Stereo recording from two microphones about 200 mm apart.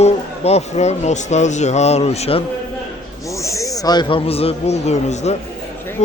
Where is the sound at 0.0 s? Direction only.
30° left (ahead or behind).